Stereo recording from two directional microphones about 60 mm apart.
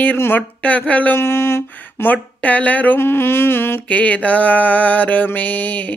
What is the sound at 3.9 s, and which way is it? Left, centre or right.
Speech, left.